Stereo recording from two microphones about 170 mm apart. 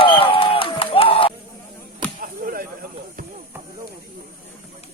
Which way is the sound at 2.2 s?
55° right (ahead or behind).